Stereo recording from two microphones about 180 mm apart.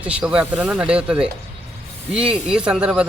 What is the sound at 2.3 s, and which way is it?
Speech, 5° right (ahead or behind).